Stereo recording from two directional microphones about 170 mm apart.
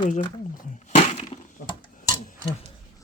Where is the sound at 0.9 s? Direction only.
40° left (ahead or behind).